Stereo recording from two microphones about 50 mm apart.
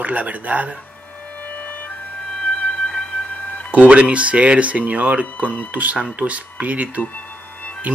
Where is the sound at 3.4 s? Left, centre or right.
Left.